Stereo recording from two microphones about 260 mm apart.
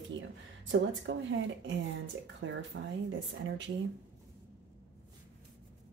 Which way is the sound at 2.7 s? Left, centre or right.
Right.